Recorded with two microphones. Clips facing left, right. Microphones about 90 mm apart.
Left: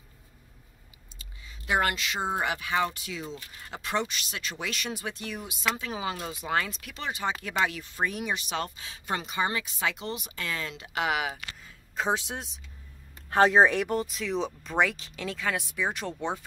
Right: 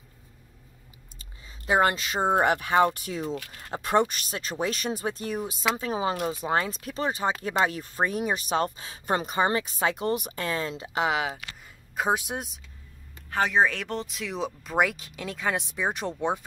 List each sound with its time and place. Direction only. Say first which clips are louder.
1.7 s speech: right 4 dB; 30° right (ahead or behind); by 12.4 s 15° right (ahead or behind)
13.3 s speech: left 3 dB; 35° left (ahead or behind)
13.7 s speech: left 4 dB; 10° left (ahead or behind); by 16.3 s 15° right (ahead or behind)